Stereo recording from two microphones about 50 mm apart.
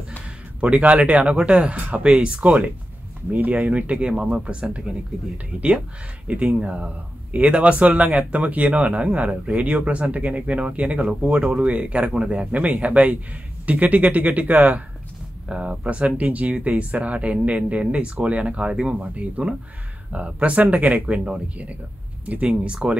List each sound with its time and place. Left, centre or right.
0.6 s speech: right
6.2 s speech: right
15.4 s speech: centre